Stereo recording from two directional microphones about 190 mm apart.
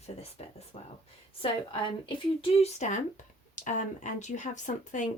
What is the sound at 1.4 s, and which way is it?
Speech, 25° left (ahead or behind).